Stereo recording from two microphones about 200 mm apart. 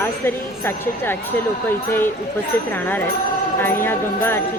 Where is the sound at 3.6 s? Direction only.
10° left (ahead or behind).